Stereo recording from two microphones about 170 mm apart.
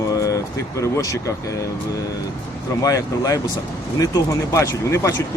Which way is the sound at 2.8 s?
20° left (ahead or behind).